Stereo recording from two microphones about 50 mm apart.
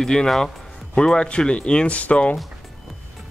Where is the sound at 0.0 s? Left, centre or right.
Centre; by 2.3 s left.